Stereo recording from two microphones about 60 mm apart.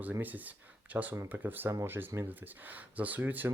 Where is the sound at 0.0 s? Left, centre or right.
Right.